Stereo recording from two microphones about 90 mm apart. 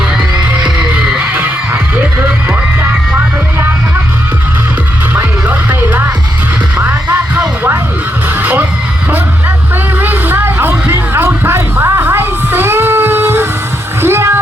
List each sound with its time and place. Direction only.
0.6 s music: 15° right (ahead or behind)
5.1 s music: 20° right (ahead or behind)
7.1 s music: 25° right (ahead or behind)
10.0 s a sound: 20° right (ahead or behind)
14.0 s music: 30° right (ahead or behind)